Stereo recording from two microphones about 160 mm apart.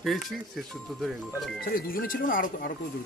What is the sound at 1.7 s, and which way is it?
Speech, 65° left (ahead or behind).